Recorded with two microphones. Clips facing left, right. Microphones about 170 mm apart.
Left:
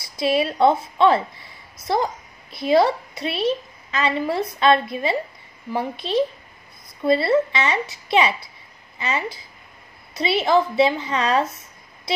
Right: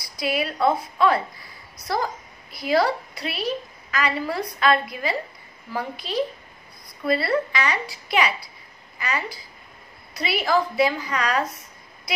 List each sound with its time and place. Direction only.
0.0 s a woman's voice: 25° left (ahead or behind)